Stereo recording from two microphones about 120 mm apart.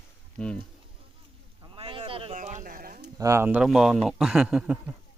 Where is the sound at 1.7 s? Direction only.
45° right (ahead or behind).